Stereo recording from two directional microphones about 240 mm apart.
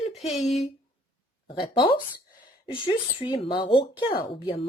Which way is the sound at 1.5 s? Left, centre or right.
Left.